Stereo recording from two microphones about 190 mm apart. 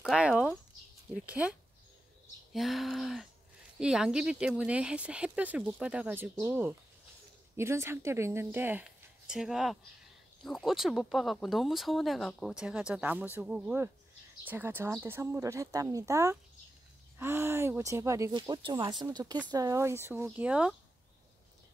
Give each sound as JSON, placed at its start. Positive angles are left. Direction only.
{"t": 0.0, "sound": "speech", "side_deg": 0}
{"t": 2.5, "sound": "speech", "side_deg": 0}